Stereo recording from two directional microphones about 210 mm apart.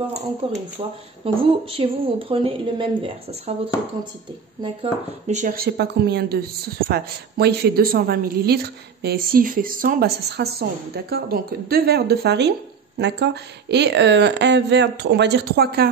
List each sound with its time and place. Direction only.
0.4 s a woman's voice: 25° right (ahead or behind)
5.2 s a woman's voice: 35° right (ahead or behind)